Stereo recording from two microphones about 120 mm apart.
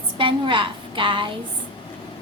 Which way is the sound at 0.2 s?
45° right (ahead or behind).